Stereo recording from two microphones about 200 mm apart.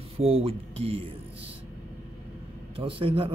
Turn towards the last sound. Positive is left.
turn(degrees=-25)  # may be behind; listen again after turning